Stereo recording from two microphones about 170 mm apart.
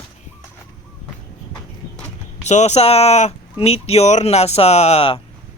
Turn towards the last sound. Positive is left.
turn(degrees=35)  # may be behind; listen again after turning